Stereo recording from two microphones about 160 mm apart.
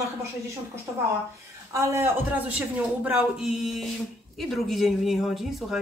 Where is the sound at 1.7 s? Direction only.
15° right (ahead or behind).